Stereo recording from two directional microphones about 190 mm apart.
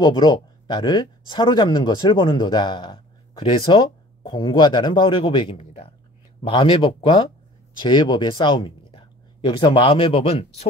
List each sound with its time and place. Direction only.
0.0 s speech: 20° left (ahead or behind)